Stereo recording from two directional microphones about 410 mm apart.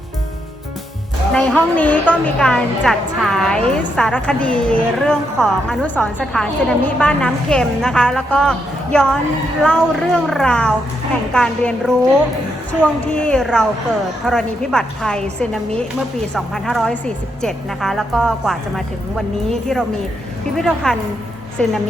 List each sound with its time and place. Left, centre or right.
1.3 s a woman's voice: centre